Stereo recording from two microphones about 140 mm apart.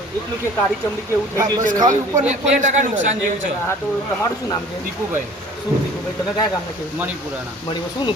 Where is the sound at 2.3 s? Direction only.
60° right (ahead or behind).